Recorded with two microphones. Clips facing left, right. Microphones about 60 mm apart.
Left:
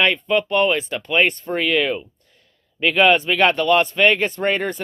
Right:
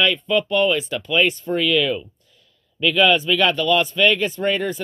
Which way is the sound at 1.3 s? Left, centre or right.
Left.